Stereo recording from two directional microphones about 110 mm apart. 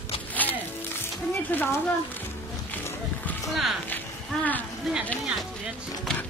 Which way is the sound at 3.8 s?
15° left (ahead or behind).